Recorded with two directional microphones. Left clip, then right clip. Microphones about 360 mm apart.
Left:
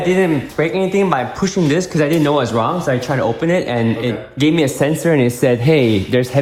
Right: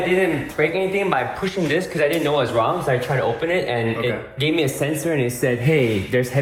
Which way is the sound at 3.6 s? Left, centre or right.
Left.